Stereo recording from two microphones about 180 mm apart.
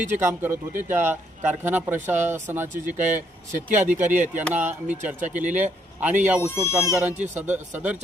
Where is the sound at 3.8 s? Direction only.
10° right (ahead or behind).